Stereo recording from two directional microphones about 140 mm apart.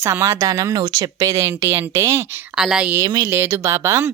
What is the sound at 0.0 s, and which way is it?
Speech, 20° right (ahead or behind).